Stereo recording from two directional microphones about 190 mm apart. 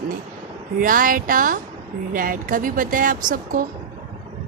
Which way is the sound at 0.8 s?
45° right (ahead or behind).